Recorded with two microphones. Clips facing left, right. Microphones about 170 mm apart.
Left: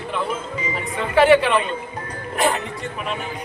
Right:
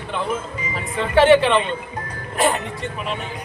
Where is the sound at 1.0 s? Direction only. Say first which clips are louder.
Right 1 dB; centre (ahead or behind).